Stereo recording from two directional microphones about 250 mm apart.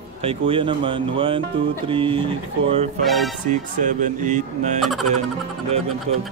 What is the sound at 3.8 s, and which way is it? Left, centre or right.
Speech, right.